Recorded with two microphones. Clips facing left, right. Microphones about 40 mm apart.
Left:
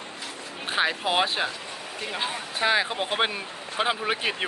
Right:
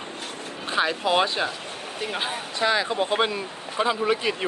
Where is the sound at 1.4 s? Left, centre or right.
Centre.